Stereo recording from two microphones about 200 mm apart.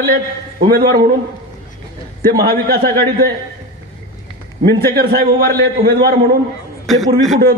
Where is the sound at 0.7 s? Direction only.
50° right (ahead or behind).